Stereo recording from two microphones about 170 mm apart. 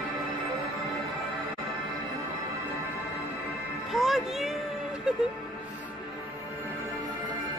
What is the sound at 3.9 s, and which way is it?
Music, centre (ahead or behind).